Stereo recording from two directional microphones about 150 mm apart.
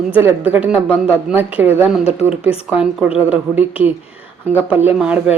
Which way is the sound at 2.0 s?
45° left (ahead or behind).